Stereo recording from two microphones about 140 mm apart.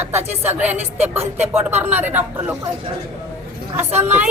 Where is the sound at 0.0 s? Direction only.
15° right (ahead or behind).